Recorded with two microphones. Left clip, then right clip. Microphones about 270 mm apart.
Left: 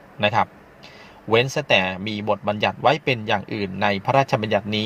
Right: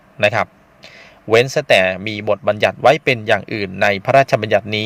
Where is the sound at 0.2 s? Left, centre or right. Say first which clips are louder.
Right 4 dB; right.